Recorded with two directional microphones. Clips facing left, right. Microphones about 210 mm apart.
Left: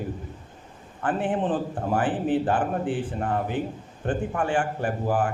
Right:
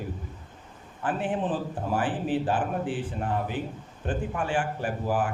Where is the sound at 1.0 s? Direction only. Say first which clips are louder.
Left 3 dB; 55° left (ahead or behind).